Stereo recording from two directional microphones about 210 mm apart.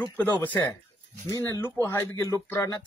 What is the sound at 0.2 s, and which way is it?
Speech, 10° left (ahead or behind).